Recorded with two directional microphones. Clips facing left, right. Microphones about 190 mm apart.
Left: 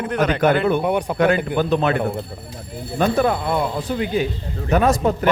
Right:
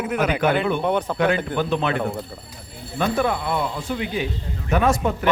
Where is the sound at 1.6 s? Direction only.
45° left (ahead or behind).